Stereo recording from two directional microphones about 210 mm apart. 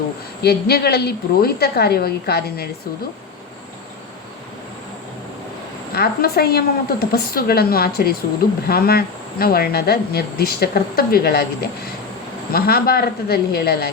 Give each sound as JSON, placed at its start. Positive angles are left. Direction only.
{"t": 0.4, "sound": "speech", "side_deg": 50}
{"t": 5.9, "sound": "speech", "side_deg": 50}
{"t": 12.5, "sound": "speech", "side_deg": 45}